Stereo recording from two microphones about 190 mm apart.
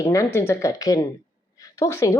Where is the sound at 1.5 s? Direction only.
15° left (ahead or behind).